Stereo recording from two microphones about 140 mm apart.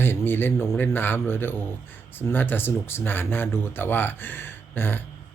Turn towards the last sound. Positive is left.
turn(degrees=15)  # may be behind; listen again after turning